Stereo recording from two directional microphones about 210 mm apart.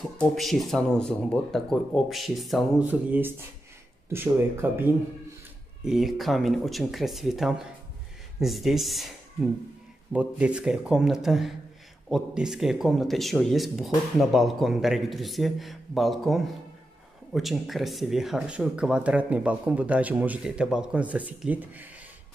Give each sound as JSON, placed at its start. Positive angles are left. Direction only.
{"t": 0.0, "sound": "speech", "side_deg": 0}